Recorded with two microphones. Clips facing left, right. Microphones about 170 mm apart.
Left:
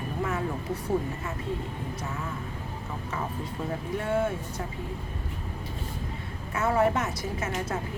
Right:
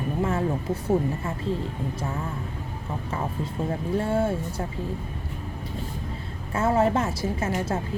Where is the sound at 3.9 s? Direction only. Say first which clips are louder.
Right 3 dB; 30° right (ahead or behind).